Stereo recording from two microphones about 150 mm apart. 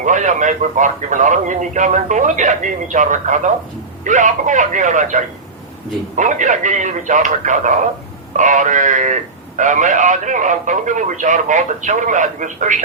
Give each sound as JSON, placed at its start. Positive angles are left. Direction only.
{"t": 0.0, "sound": "a man's voice", "side_deg": -55}